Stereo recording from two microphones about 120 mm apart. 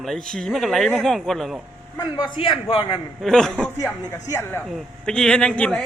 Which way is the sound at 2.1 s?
40° left (ahead or behind).